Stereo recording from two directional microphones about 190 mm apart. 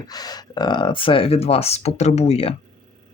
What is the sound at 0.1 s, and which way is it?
Speech, 20° left (ahead or behind).